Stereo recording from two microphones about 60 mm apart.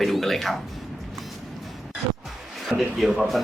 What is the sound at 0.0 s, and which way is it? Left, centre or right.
Music, centre.